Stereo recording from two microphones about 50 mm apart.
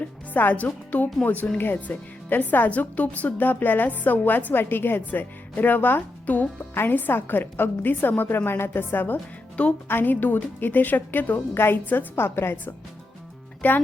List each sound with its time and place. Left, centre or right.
0.3 s a woman's voice: left
9.6 s speech: left
9.9 s a woman's voice: left
11.5 s a woman's voice: left
13.6 s speech: left